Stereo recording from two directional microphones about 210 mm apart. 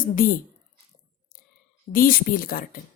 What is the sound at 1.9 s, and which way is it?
Speech, 45° left (ahead or behind).